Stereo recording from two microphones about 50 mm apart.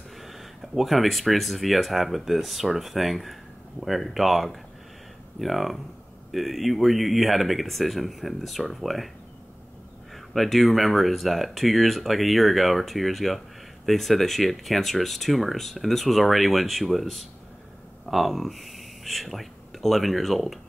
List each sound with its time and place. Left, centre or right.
0.2 s speech: centre
10.1 s speech: centre